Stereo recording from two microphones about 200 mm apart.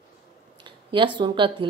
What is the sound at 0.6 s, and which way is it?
Speech, 25° right (ahead or behind).